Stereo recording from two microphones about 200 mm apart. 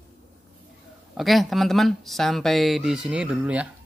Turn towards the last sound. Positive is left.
turn(degrees=-5)  # may be behind; listen again after turning